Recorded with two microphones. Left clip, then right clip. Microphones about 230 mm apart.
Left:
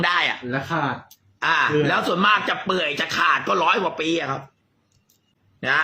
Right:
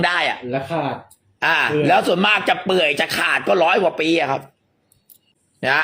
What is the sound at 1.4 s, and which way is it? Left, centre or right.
Speech, left.